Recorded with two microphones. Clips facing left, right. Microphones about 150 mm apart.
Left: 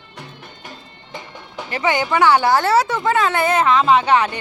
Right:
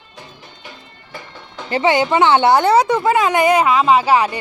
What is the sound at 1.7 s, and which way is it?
A woman's voice, 25° right (ahead or behind).